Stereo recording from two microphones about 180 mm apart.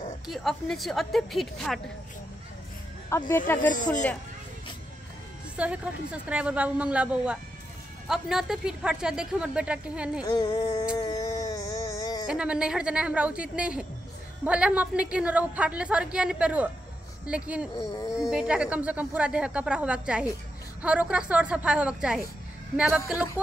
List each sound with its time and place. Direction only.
0.3 s speech: centre (ahead or behind)
3.1 s speech: 15° left (ahead or behind)
3.7 s speech: 45° left (ahead or behind)
5.6 s a woman's voice: 5° right (ahead or behind)
10.2 s a sound: 20° left (ahead or behind)
11.0 s wail: 20° left (ahead or behind)
12.3 s a woman's voice: 5° right (ahead or behind)